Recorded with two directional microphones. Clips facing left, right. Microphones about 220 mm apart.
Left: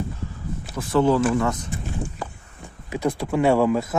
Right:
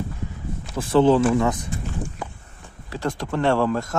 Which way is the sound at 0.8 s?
30° right (ahead or behind).